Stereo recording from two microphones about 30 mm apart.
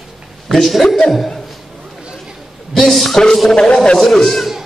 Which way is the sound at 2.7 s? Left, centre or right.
Centre.